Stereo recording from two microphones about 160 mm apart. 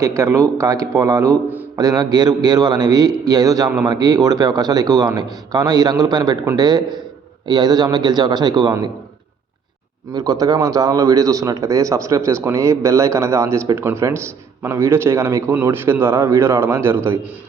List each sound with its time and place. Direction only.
0.0 s a man's voice: 20° right (ahead or behind)
10.1 s a man's voice: 25° right (ahead or behind)